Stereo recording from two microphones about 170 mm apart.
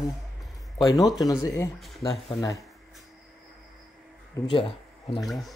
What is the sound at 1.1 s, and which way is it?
Speech, 20° left (ahead or behind).